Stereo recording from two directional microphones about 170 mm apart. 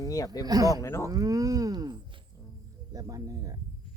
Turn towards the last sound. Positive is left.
turn(degrees=-20)  # may be behind; listen again after turning